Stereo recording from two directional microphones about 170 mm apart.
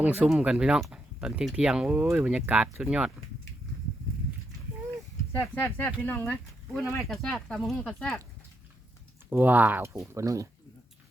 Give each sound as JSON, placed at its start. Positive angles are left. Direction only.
{"t": 0.0, "sound": "speech", "side_deg": -10}
{"t": 5.3, "sound": "speech", "side_deg": 15}
{"t": 9.3, "sound": "speech", "side_deg": -10}